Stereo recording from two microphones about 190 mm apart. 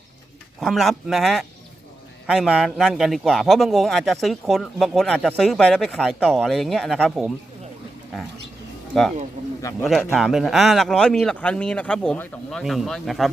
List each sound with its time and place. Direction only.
0.6 s a man's voice: centre (ahead or behind)
8.9 s speech: centre (ahead or behind)
9.6 s speech: 15° left (ahead or behind)
9.9 s a man's voice: centre (ahead or behind)